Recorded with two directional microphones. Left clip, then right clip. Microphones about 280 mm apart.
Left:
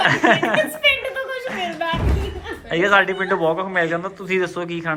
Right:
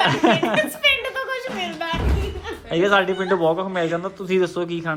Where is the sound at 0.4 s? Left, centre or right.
Centre.